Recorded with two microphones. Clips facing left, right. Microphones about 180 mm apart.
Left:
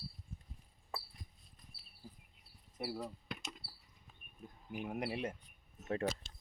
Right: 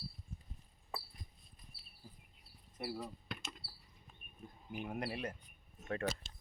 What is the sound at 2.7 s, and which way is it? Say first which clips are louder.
Speech: left 1 dB; centre (ahead or behind).